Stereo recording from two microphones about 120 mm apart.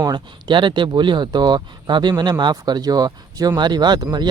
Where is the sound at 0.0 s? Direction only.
40° right (ahead or behind).